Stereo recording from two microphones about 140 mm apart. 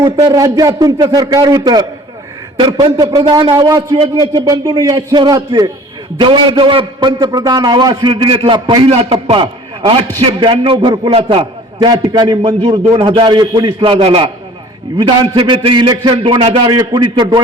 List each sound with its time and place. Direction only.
0.3 s a man's voice: 25° right (ahead or behind)
8.9 s a man's voice: 45° right (ahead or behind)